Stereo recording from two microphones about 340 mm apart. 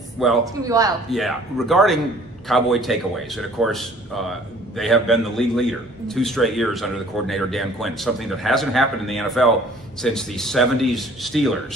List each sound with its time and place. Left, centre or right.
0.2 s a man's voice: centre
1.1 s a man's voice: centre